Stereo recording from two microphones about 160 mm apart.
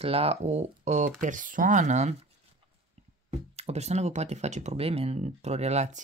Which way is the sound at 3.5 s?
40° right (ahead or behind).